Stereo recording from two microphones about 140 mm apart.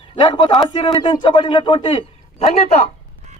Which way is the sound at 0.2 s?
35° left (ahead or behind).